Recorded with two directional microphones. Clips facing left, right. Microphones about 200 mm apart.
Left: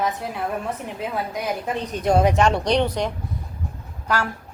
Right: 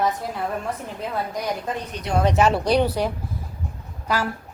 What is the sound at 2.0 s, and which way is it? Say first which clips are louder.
Speech: left 9 dB; 50° left (ahead or behind).